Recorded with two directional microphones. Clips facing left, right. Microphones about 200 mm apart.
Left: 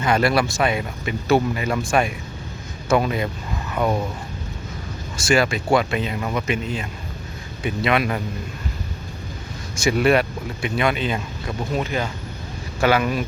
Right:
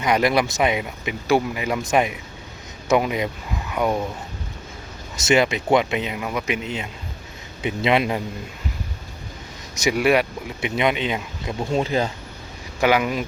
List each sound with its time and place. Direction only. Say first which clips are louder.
0.0 s speech: even; 15° right (ahead or behind)
3.7 s a sound: even; 15° right (ahead or behind)
5.1 s speech: right 1 dB; 20° right (ahead or behind)
9.7 s speech: left 1 dB; 15° right (ahead or behind); by 12.1 s 30° right (ahead or behind)
12.8 s speech: even; 15° right (ahead or behind)